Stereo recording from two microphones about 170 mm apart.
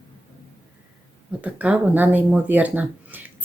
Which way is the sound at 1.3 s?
10° right (ahead or behind).